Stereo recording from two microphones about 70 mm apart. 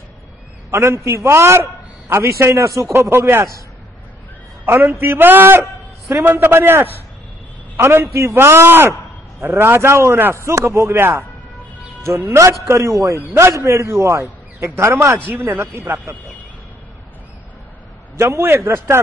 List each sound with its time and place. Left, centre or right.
0.7 s a man's voice: right
2.9 s a man's voice: right
4.6 s a man's voice: right
15.3 s a man's voice: right
18.1 s a man's voice: right